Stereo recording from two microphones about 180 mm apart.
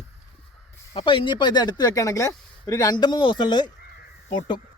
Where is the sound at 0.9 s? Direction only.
30° left (ahead or behind).